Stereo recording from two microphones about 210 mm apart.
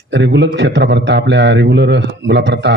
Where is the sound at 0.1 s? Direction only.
55° right (ahead or behind).